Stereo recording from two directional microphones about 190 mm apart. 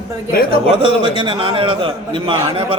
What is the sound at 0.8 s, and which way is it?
A man's voice, 25° right (ahead or behind).